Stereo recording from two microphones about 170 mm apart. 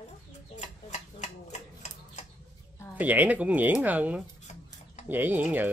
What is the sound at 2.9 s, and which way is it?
Speech, 10° right (ahead or behind).